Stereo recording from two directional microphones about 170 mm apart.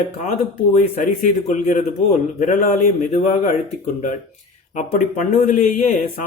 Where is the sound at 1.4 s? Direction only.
45° left (ahead or behind).